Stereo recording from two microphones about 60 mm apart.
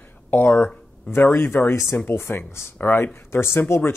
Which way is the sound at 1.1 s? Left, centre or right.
Left.